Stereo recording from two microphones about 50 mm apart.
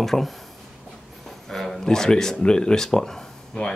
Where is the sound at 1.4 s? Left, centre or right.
Centre.